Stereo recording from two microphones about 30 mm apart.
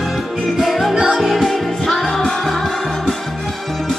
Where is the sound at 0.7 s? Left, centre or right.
Centre.